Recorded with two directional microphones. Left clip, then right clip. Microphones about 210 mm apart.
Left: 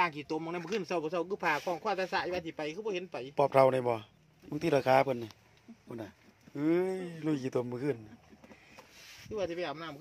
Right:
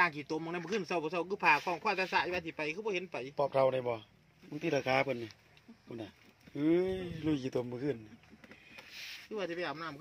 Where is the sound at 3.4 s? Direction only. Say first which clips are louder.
Left 5 dB; 30° left (ahead or behind); by 5.1 s 15° left (ahead or behind).